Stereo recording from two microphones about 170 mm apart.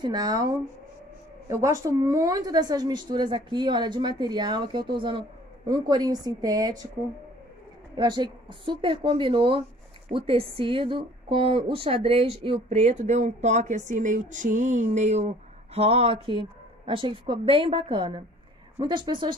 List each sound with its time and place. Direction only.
0.0 s speech: 25° right (ahead or behind)
7.9 s a woman's voice: 25° right (ahead or behind)